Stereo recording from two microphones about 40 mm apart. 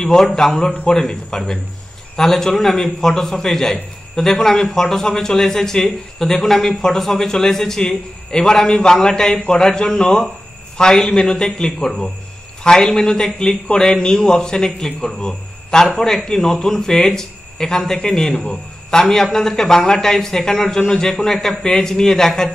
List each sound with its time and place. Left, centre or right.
0.0 s a man's voice: centre